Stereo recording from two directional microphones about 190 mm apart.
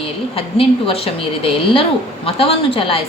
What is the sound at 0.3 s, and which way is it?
A woman's voice, 30° left (ahead or behind).